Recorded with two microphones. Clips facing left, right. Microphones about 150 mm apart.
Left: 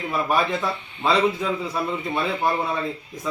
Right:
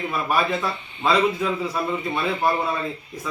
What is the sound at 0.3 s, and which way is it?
Speech, 5° right (ahead or behind).